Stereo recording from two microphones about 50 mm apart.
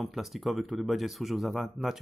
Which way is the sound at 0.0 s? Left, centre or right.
Centre.